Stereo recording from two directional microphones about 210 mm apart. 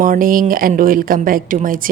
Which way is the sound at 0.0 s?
40° right (ahead or behind).